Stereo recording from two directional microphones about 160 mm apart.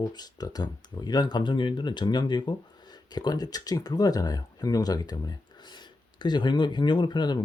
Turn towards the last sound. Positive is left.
turn(degrees=25)  # may be behind; listen again after turning